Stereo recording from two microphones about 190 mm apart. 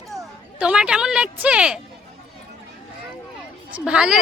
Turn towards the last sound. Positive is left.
turn(degrees=-5)  # may be behind; listen again after turning